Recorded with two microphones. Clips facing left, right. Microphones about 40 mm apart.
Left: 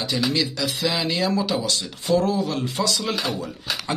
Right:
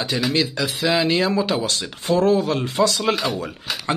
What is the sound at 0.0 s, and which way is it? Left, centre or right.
Speech, right.